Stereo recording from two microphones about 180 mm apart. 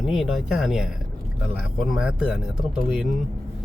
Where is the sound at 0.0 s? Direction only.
Centre (ahead or behind).